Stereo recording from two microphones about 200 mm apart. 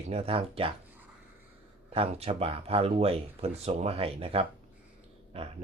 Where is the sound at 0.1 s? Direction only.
30° right (ahead or behind).